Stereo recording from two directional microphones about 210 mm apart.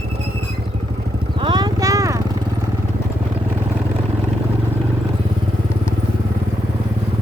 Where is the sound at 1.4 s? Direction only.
20° right (ahead or behind).